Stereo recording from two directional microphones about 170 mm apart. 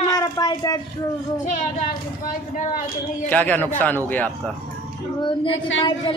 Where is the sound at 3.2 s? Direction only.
10° left (ahead or behind).